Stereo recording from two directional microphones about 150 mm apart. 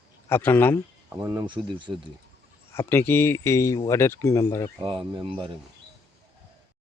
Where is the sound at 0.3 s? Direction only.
15° left (ahead or behind).